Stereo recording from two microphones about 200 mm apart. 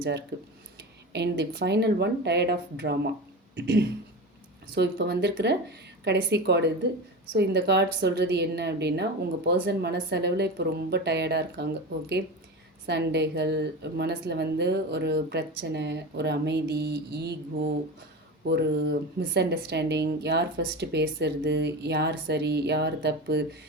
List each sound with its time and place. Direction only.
0.0 s a woman's voice: 55° right (ahead or behind)
18.4 s a woman's voice: 55° right (ahead or behind)